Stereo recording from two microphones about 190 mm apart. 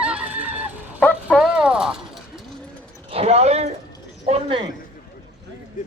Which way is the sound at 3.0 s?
30° right (ahead or behind).